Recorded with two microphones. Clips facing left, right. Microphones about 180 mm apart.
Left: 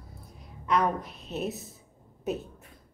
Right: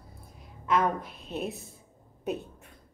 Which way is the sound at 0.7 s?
5° right (ahead or behind).